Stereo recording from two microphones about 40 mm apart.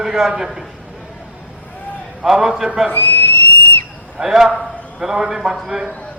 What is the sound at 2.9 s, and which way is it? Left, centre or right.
Whistle, left.